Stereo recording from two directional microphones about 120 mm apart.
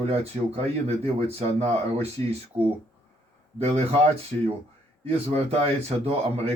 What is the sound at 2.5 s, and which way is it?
Speech, 20° right (ahead or behind).